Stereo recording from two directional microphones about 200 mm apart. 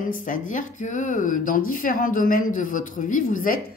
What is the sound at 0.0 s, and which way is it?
A woman's voice, 40° left (ahead or behind).